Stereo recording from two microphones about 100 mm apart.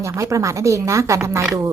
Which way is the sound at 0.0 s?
30° right (ahead or behind).